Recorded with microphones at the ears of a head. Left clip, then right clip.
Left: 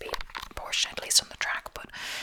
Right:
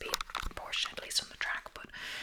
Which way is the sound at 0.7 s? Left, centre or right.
Left.